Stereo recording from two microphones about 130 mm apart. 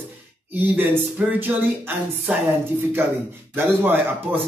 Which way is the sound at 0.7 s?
15° right (ahead or behind).